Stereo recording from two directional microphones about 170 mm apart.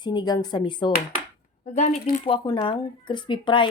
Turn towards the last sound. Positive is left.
turn(degrees=30)  # may be behind; listen again after turning